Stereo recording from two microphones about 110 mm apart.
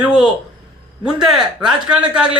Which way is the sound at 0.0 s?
10° right (ahead or behind).